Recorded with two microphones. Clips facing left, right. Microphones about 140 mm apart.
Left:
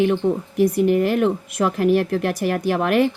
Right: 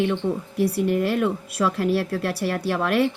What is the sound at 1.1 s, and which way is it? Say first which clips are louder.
Speech: left 4 dB; 25° left (ahead or behind).